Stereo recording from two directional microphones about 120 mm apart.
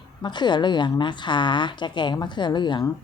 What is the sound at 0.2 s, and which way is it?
A woman's voice, 40° left (ahead or behind).